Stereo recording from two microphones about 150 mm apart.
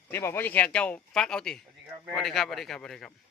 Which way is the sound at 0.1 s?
15° left (ahead or behind).